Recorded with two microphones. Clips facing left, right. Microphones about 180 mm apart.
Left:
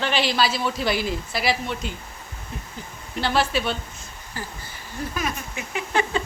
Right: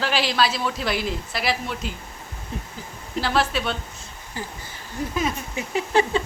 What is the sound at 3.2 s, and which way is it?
Speech, centre (ahead or behind).